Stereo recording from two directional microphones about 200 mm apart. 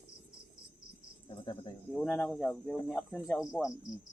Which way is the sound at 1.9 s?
Centre (ahead or behind).